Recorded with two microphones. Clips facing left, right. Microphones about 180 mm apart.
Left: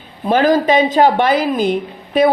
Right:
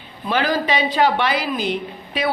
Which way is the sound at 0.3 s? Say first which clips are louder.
Left 8 dB; 45° left (ahead or behind).